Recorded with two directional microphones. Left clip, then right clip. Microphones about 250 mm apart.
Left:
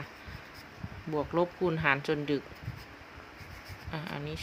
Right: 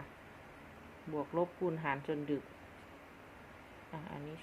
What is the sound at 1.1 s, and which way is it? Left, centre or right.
Speech, left.